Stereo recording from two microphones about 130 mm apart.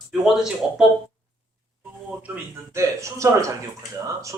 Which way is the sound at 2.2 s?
10° right (ahead or behind).